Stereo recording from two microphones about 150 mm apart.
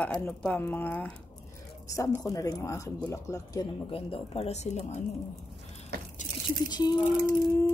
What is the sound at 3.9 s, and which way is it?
Speech, 40° left (ahead or behind).